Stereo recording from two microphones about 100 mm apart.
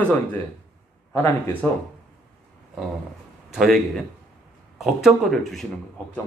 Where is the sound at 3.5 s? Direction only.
Centre (ahead or behind).